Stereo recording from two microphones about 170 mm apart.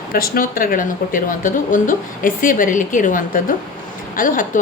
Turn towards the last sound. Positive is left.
turn(degrees=50)  # may be behind; listen again after turning